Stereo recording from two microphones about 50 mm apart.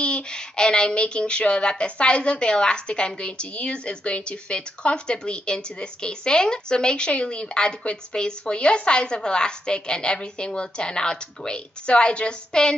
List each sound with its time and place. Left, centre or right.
0.0 s speech: centre